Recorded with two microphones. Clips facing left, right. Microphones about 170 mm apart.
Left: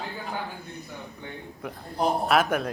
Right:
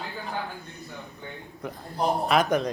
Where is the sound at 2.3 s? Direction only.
5° left (ahead or behind).